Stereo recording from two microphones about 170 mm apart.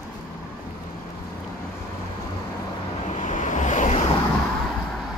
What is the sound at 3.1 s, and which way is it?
Waves, 45° left (ahead or behind).